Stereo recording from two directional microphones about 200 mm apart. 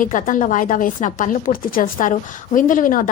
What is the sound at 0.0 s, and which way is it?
A woman's voice, 40° left (ahead or behind).